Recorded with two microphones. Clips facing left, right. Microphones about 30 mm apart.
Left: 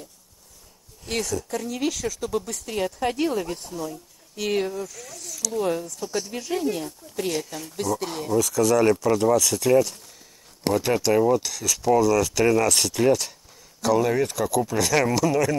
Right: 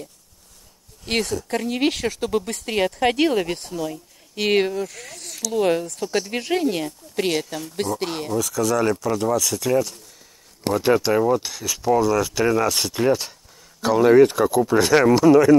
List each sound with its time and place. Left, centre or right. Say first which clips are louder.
1.0 s speech: right 4 dB; right
7.3 s speech: right 4 dB; right
7.7 s speech: right 1 dB; right
8.3 s speech: left 3 dB; centre
10.9 s speech: right 3 dB; centre
14.1 s speech: right 11 dB; right
14.7 s speech: right 8 dB; right